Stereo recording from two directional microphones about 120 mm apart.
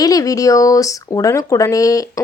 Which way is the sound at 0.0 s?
30° left (ahead or behind).